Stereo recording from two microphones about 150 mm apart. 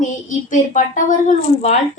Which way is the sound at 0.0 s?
55° left (ahead or behind).